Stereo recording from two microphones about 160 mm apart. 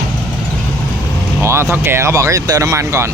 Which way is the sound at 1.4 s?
15° right (ahead or behind).